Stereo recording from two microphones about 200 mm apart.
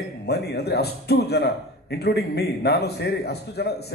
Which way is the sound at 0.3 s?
55° left (ahead or behind).